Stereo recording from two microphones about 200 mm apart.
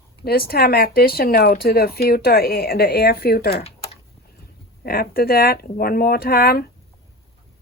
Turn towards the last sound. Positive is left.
turn(degrees=50)  # may be behind; listen again after turning